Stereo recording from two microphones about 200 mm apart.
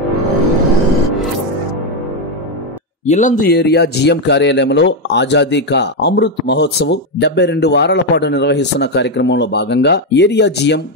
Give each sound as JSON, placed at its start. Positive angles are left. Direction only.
{"t": 3.1, "sound": "speech", "side_deg": 40}